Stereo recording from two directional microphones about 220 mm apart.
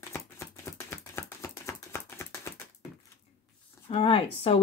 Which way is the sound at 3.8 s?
25° left (ahead or behind).